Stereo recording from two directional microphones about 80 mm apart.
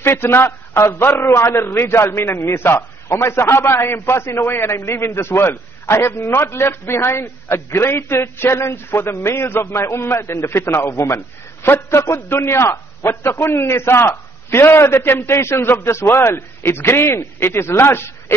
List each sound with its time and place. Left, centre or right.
0.0 s a man's voice: left